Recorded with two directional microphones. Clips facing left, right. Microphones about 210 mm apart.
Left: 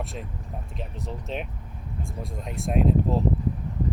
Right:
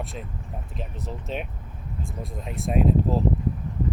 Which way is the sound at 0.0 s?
Centre (ahead or behind).